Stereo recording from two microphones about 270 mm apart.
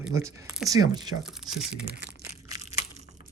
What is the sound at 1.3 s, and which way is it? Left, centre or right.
Speech, centre.